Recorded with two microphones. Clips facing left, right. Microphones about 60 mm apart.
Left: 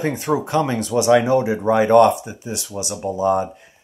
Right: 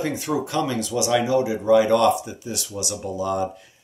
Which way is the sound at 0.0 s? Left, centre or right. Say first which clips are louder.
Left 4 dB; left.